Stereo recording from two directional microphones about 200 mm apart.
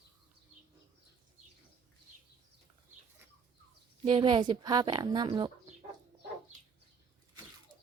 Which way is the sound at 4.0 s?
25° right (ahead or behind).